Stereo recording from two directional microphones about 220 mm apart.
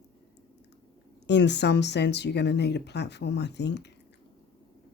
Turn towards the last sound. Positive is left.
turn(degrees=50)  # may be behind; listen again after turning